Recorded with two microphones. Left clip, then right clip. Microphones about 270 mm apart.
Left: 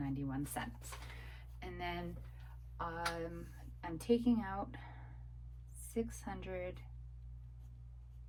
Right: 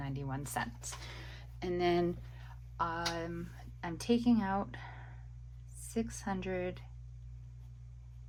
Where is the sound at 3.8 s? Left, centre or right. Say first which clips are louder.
Right 2 dB; right.